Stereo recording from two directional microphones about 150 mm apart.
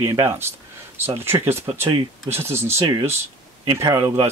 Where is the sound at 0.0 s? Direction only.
25° right (ahead or behind).